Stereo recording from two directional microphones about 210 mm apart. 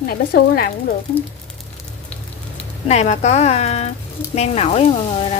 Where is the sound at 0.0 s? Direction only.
45° left (ahead or behind).